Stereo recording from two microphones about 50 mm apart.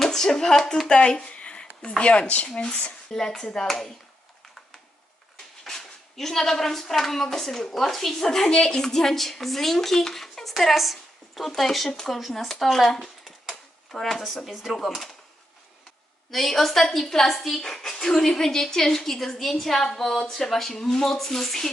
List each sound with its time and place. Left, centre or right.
0.0 s speech: centre; by 2.5 s left
2.5 s a woman's voice: centre
5.6 s a woman's voice: centre
16.3 s a woman's voice: centre